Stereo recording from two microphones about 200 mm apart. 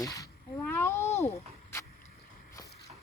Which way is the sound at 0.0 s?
15° left (ahead or behind).